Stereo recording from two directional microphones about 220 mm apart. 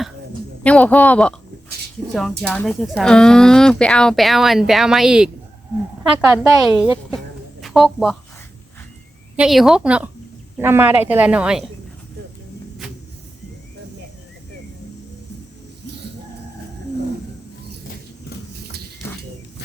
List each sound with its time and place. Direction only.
0.6 s speech: 5° left (ahead or behind)
2.4 s a woman's voice: 5° left (ahead or behind)
9.3 s a woman's voice: 5° right (ahead or behind)